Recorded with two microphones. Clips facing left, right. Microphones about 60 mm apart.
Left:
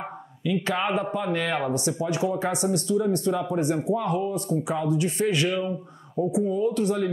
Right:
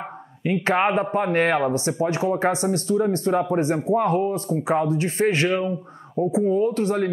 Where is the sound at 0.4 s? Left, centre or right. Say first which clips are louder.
Right 5 dB; right.